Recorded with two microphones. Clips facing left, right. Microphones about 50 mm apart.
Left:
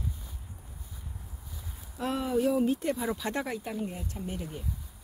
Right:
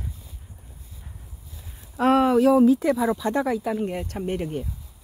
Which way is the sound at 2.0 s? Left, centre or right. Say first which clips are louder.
Right 11 dB; right.